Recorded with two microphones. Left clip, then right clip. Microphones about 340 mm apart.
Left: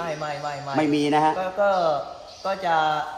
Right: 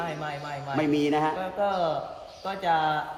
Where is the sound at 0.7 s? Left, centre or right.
Left.